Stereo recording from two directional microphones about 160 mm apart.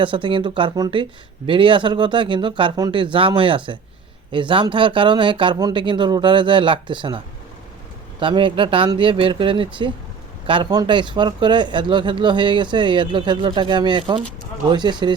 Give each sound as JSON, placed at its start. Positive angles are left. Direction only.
{"t": 0.0, "sound": "speech", "side_deg": -30}
{"t": 8.2, "sound": "speech", "side_deg": -30}